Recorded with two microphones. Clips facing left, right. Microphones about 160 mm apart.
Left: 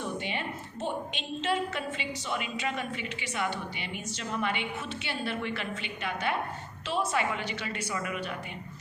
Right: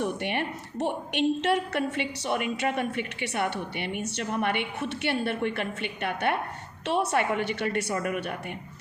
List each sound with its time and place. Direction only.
0.0 s a woman's voice: 65° right (ahead or behind)
7.9 s a woman's voice: 50° right (ahead or behind)